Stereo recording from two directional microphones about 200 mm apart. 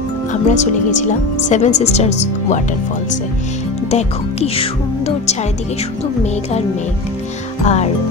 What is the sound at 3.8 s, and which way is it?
Speech, 30° left (ahead or behind).